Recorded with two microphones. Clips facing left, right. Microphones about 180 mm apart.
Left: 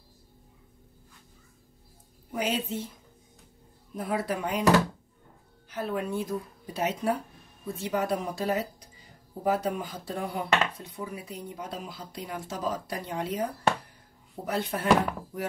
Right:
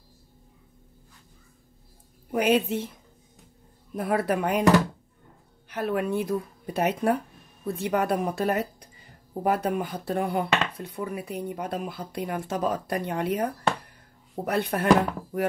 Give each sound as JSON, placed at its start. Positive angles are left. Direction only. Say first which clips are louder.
{"t": 2.3, "sound": "speech", "louder": "right 7 dB", "side_deg": -60}
{"t": 3.9, "sound": "speech", "louder": "right 5 dB", "side_deg": -60}
{"t": 5.7, "sound": "speech", "louder": "right 4 dB", "side_deg": -65}